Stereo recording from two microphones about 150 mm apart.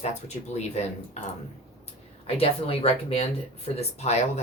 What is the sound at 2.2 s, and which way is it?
Speech, 40° left (ahead or behind).